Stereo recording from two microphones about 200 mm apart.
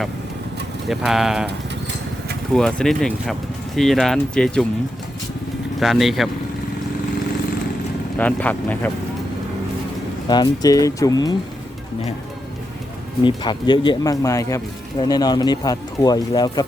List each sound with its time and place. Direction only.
0.9 s speech: centre (ahead or behind)
2.5 s speech: centre (ahead or behind)
5.8 s speech: centre (ahead or behind)
8.2 s speech: 5° left (ahead or behind)
10.2 s speech: 20° left (ahead or behind)
13.2 s speech: 20° left (ahead or behind)